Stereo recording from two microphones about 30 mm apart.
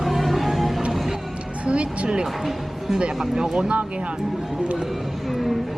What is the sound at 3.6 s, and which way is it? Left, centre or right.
Speech, right.